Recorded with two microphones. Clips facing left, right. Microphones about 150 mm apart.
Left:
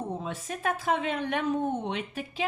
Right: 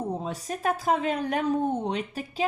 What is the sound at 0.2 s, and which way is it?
A woman's voice, 35° right (ahead or behind).